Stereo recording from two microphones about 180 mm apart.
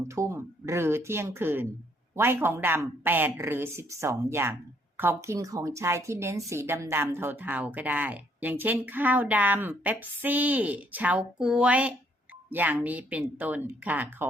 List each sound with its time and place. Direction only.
0.1 s a woman's voice: 15° right (ahead or behind)